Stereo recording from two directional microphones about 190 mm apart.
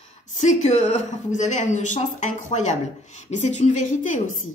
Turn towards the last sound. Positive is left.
turn(degrees=40)  # may be behind; listen again after turning